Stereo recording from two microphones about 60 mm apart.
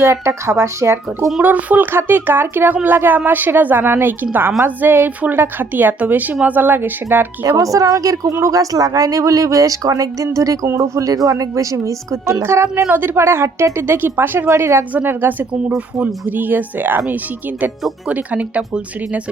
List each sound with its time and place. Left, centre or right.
0.0 s speech: right
1.4 s speech: right
7.4 s a woman's voice: right
8.3 s speech: right
8.5 s a woman's voice: right
12.9 s speech: right
13.1 s speech: right
14.9 s speech: right
18.1 s speech: right